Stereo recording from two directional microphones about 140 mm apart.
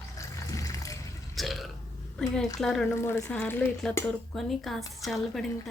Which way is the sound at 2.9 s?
20° left (ahead or behind).